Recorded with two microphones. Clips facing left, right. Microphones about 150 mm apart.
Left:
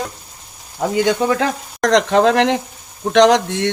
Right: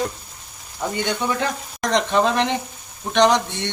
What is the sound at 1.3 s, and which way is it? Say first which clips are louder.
Speech: left 5 dB; 90° left.